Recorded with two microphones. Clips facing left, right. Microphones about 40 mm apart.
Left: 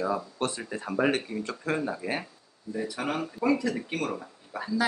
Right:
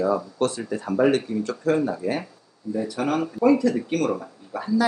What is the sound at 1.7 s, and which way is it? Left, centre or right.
Speech, centre.